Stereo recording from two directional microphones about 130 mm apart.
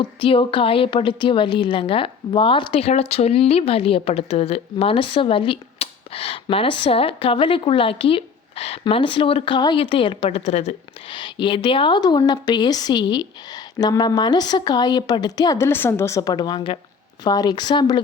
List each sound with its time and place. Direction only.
0.0 s a woman's voice: 45° left (ahead or behind)
8.8 s a woman's voice: 40° left (ahead or behind)
10.2 s a woman's voice: 55° left (ahead or behind)
11.1 s a woman's voice: 40° left (ahead or behind)